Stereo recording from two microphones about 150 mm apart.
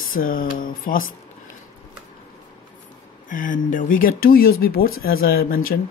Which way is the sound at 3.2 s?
60° left (ahead or behind).